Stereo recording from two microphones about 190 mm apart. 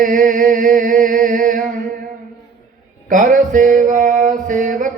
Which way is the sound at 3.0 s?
45° right (ahead or behind).